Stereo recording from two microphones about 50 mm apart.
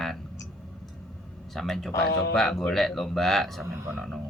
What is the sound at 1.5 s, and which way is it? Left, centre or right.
Speech, centre.